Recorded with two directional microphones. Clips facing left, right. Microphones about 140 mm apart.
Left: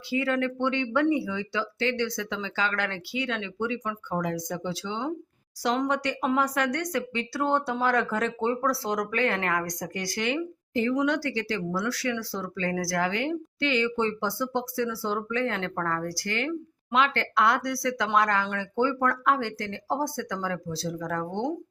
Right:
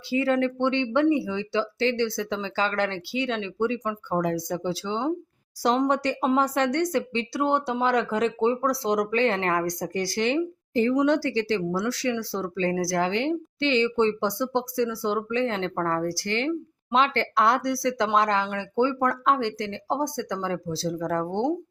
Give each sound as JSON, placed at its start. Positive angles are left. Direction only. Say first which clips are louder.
{"t": 0.1, "sound": "speech", "louder": "right 3 dB", "side_deg": -30}